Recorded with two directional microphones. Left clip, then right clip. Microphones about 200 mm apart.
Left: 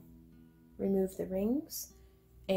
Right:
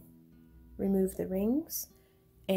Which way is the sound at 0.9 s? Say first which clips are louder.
Right 3 dB; 40° right (ahead or behind).